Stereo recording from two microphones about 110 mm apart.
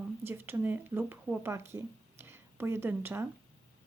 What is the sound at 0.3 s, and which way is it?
Speech, 20° right (ahead or behind).